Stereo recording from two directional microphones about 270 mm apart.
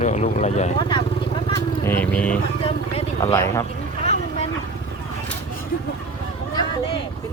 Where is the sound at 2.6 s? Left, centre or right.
Left.